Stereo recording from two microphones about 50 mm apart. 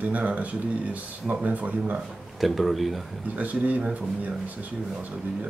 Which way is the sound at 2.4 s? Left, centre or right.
Centre.